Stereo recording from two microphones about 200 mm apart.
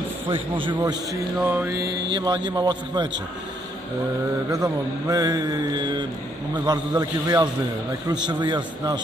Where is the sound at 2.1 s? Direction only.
20° right (ahead or behind).